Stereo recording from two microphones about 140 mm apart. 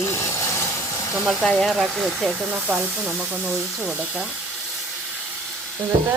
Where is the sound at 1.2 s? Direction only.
Centre (ahead or behind).